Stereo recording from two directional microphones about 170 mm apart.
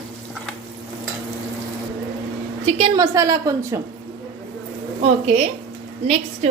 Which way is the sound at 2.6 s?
35° right (ahead or behind).